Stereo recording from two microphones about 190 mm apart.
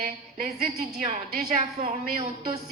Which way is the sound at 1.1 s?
40° right (ahead or behind).